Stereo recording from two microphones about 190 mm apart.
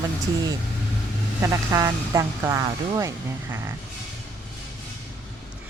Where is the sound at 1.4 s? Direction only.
15° right (ahead or behind).